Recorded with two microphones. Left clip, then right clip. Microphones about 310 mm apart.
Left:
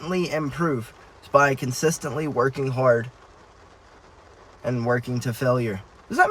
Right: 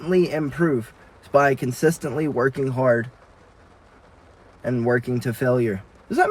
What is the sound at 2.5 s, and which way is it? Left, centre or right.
Speech, left.